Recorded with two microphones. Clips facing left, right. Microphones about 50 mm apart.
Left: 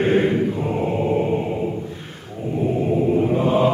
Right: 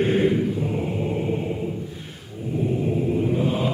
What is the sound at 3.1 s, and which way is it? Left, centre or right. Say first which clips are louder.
Mantra: left 6 dB; left.